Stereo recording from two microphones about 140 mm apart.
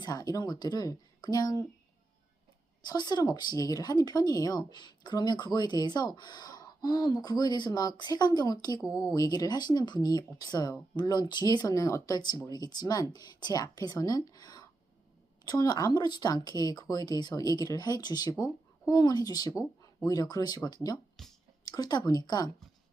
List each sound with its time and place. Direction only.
0.0 s speech: 25° left (ahead or behind)
2.8 s speech: 30° left (ahead or behind)
8.9 s speech: 5° right (ahead or behind)
9.1 s speech: 25° left (ahead or behind)